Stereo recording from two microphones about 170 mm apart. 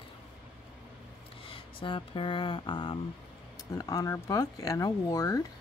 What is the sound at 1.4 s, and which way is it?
Speech, 30° left (ahead or behind).